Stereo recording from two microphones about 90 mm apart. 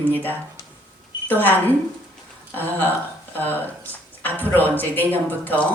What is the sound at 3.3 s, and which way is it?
Speech, 20° left (ahead or behind).